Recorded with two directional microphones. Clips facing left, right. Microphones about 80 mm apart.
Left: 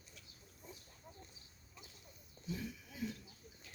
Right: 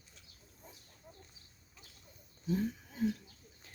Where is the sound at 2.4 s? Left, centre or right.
Right.